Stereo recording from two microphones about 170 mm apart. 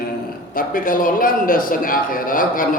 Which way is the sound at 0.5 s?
55° left (ahead or behind).